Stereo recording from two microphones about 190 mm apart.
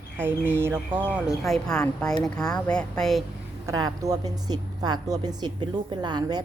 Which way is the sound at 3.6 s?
20° right (ahead or behind).